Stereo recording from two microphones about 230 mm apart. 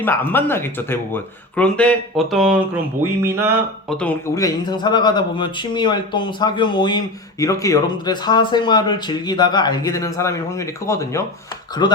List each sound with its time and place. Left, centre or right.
0.0 s speech: centre
3.8 s speech: centre